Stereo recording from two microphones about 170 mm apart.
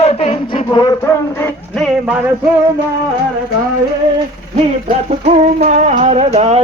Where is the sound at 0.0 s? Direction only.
35° left (ahead or behind).